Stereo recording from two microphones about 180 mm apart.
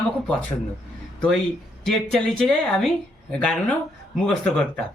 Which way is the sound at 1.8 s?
Centre (ahead or behind).